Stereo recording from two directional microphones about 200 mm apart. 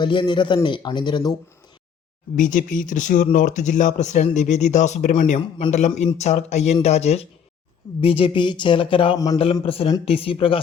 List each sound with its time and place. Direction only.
0.0 s speech: 25° left (ahead or behind)
2.3 s speech: 40° left (ahead or behind); by 9.4 s 15° left (ahead or behind)
9.4 s speech: 30° left (ahead or behind)